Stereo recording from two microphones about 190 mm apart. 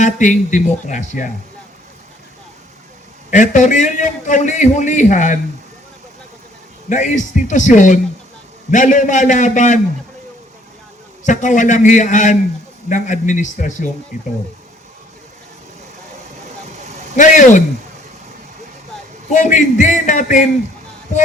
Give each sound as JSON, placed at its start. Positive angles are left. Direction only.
{"t": 0.0, "sound": "a man's voice", "side_deg": 40}
{"t": 3.2, "sound": "a man's voice", "side_deg": 40}
{"t": 6.9, "sound": "a man's voice", "side_deg": 40}
{"t": 11.3, "sound": "a man's voice", "side_deg": 40}
{"t": 17.2, "sound": "a man's voice", "side_deg": 40}
{"t": 19.3, "sound": "a man's voice", "side_deg": 40}